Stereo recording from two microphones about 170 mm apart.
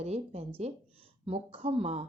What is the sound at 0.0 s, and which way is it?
Speech, 40° right (ahead or behind).